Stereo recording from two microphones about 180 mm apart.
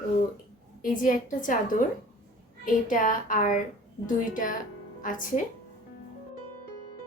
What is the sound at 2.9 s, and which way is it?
Speech, 50° left (ahead or behind).